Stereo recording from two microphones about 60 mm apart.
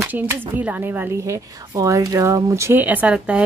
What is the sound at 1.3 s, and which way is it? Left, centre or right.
Speech, right.